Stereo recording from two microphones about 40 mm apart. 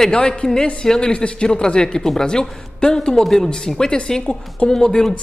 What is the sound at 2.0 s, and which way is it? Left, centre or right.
A man's voice, centre.